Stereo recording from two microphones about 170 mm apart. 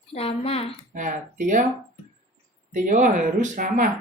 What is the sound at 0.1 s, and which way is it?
Speech, 35° left (ahead or behind).